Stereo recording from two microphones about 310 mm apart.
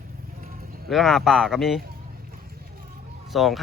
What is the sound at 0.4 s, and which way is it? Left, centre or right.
Clip-clop, right.